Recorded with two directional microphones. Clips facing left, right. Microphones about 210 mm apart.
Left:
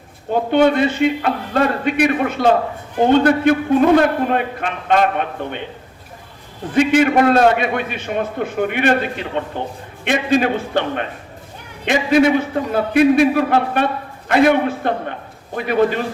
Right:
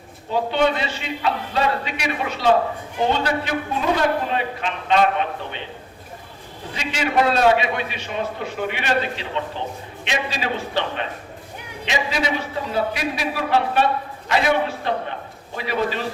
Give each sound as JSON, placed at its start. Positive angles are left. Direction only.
{"t": 0.5, "sound": "a man's voice", "side_deg": 50}
{"t": 6.7, "sound": "a man's voice", "side_deg": 55}